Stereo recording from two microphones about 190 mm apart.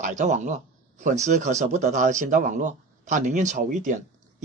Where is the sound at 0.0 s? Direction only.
40° right (ahead or behind).